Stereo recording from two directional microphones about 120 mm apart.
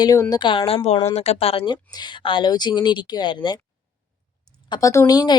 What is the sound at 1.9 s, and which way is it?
A woman's voice, 40° left (ahead or behind).